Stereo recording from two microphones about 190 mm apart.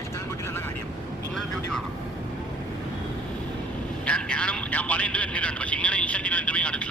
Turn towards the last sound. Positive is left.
turn(degrees=5)  # may be behind; listen again after turning